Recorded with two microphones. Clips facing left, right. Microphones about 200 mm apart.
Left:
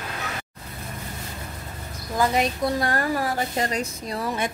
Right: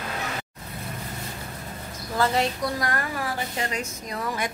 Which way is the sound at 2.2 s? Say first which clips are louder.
Left 2 dB; 15° left (ahead or behind).